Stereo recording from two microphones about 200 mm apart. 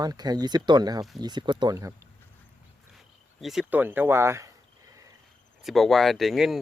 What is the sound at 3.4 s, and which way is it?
Speech, centre (ahead or behind).